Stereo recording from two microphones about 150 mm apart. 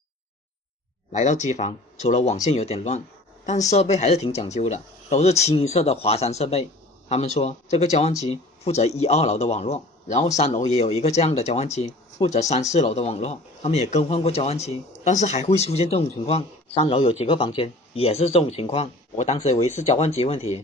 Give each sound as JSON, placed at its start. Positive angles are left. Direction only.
{"t": 1.1, "sound": "speech", "side_deg": 50}